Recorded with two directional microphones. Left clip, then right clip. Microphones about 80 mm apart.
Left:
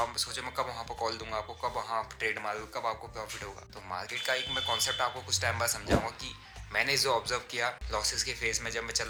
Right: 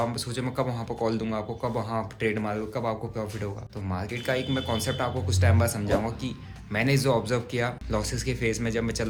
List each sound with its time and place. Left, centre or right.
0.0 s a man's voice: right